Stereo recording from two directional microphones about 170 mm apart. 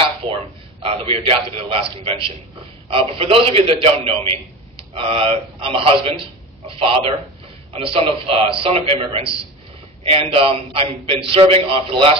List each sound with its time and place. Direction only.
0.3 s a man's voice: 35° right (ahead or behind)